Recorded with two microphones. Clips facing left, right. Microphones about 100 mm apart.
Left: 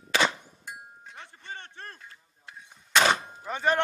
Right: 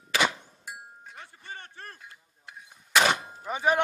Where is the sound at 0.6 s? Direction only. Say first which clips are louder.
Even; 5° right (ahead or behind).